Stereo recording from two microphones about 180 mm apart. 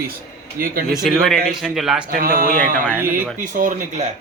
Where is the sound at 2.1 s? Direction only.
50° right (ahead or behind).